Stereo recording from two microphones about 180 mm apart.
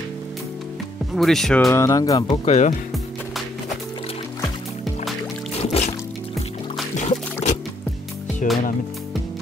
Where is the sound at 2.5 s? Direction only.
40° left (ahead or behind).